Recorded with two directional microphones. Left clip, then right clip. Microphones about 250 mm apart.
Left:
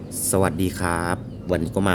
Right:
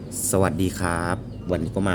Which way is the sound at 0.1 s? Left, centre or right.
Centre.